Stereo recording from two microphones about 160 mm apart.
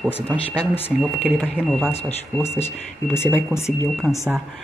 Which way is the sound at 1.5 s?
Centre (ahead or behind).